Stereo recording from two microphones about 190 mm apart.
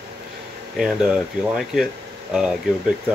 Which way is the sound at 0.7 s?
Centre (ahead or behind).